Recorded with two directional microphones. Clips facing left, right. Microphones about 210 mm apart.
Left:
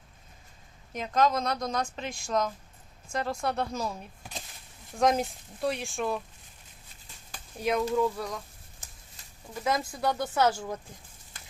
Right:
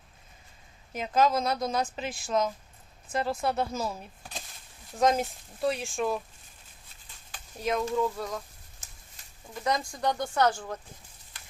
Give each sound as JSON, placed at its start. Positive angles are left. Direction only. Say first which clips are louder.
{"t": 0.9, "sound": "speech", "louder": "right 1 dB", "side_deg": -5}
{"t": 4.2, "sound": "a sound", "louder": "even", "side_deg": 15}
{"t": 4.9, "sound": "speech", "louder": "even", "side_deg": 0}
{"t": 7.6, "sound": "speech", "louder": "left 1 dB", "side_deg": 0}
{"t": 9.6, "sound": "speech", "louder": "even", "side_deg": 5}